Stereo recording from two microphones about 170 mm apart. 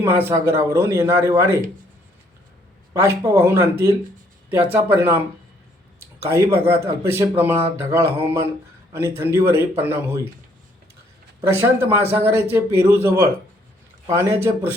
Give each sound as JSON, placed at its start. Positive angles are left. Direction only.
{"t": 0.0, "sound": "speech", "side_deg": -15}
{"t": 2.9, "sound": "speech", "side_deg": -20}
{"t": 6.2, "sound": "speech", "side_deg": -15}
{"t": 11.4, "sound": "a man's voice", "side_deg": -15}